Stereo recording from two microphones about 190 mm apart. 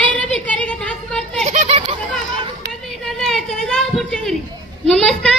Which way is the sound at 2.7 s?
Centre (ahead or behind).